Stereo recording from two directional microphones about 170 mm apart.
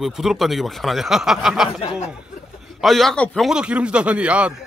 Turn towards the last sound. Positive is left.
turn(degrees=-5)  # may be behind; listen again after turning